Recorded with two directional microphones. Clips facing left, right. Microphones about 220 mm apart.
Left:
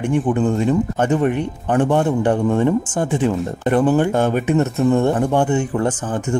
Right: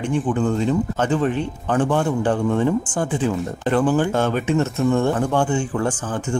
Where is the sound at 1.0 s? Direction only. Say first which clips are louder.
Left 3 dB; 15° left (ahead or behind).